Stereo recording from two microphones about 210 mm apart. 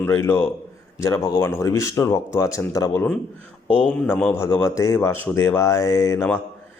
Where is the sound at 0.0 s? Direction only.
10° left (ahead or behind).